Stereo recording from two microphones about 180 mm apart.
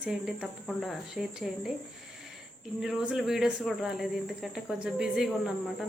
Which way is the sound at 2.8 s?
Centre (ahead or behind).